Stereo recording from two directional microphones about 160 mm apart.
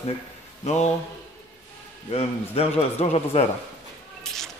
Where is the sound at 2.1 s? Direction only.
40° left (ahead or behind).